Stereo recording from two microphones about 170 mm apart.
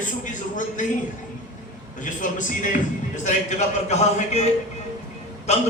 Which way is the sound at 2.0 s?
50° left (ahead or behind).